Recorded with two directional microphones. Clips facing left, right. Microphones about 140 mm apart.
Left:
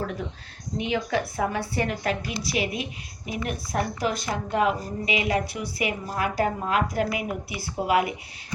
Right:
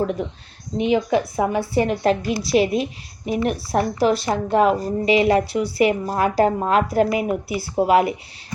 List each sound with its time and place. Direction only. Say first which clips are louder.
0.0 s a woman's voice: right 8 dB; 20° right (ahead or behind)